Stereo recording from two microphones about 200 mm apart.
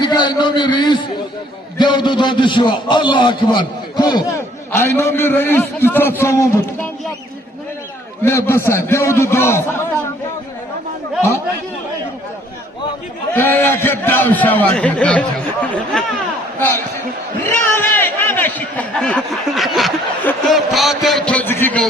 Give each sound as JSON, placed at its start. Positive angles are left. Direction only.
{"t": 0.0, "sound": "a man's voice", "side_deg": 20}
{"t": 8.2, "sound": "speech", "side_deg": 15}
{"t": 13.3, "sound": "speech", "side_deg": 10}
{"t": 16.6, "sound": "speech", "side_deg": 10}